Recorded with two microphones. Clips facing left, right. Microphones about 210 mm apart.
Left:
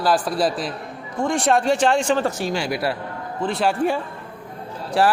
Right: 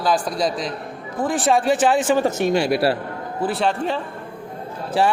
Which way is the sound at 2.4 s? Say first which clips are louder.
Right 5 dB; 20° right (ahead or behind).